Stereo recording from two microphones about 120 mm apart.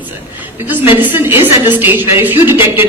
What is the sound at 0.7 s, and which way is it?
A man's voice, 15° right (ahead or behind).